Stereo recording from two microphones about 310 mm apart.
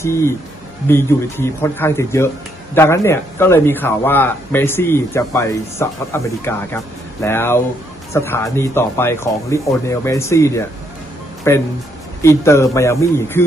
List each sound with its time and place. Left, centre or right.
0.0 s speech: centre